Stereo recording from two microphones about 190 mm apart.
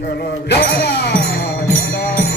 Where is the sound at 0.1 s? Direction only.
60° left (ahead or behind).